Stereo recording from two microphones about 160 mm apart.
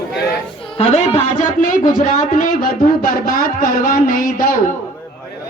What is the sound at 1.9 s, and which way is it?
Speech, 55° left (ahead or behind).